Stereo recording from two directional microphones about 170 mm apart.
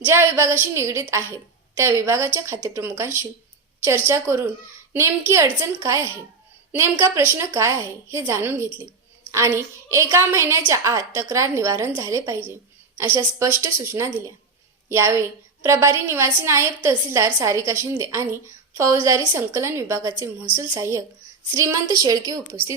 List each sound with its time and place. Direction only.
0.0 s a woman's voice: 15° right (ahead or behind)